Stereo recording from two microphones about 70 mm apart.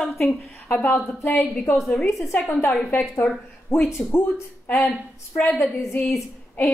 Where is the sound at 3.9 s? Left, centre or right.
Left.